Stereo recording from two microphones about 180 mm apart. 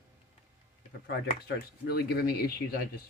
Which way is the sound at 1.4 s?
65° left (ahead or behind).